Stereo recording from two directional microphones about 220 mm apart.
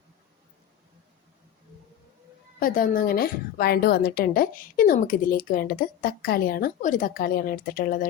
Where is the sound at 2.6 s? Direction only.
40° left (ahead or behind).